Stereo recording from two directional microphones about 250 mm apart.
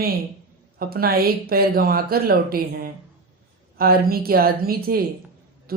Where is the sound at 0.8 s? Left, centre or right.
Right.